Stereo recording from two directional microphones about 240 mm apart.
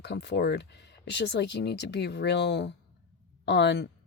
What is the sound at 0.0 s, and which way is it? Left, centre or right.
Speech, left.